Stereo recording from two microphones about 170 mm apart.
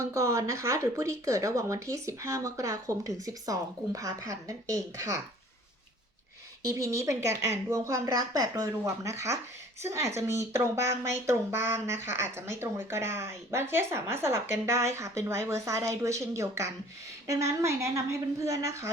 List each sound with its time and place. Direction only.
0.0 s speech: 20° right (ahead or behind)
6.7 s a woman's voice: 20° right (ahead or behind)